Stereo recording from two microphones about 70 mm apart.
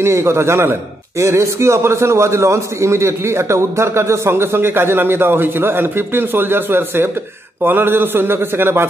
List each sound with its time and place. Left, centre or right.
0.0 s a man's voice: right